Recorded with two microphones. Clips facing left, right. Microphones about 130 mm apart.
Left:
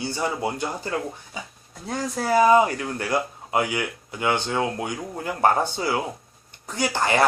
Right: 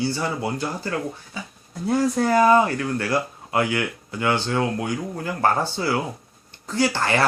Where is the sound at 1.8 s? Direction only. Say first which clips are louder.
Right 8 dB; 5° right (ahead or behind).